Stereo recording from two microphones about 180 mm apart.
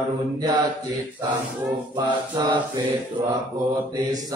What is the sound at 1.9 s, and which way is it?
Mantra, 25° right (ahead or behind).